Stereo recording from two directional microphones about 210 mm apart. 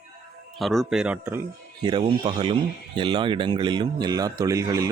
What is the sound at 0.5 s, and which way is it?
Speech, centre (ahead or behind).